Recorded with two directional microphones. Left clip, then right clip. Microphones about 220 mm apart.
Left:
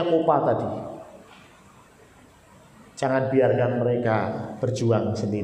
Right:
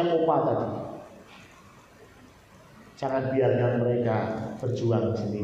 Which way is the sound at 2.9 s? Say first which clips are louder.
Left 5 dB; 50° left (ahead or behind).